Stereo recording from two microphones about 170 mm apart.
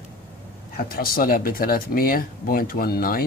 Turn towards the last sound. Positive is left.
turn(degrees=60)  # may be behind; listen again after turning